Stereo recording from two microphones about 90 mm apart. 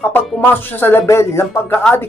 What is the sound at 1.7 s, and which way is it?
Music, 15° left (ahead or behind).